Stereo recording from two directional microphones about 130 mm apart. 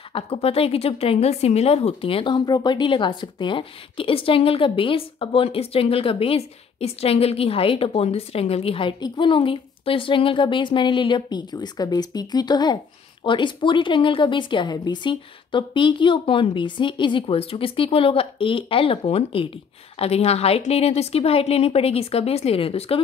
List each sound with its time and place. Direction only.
0.1 s a woman's voice: 45° left (ahead or behind)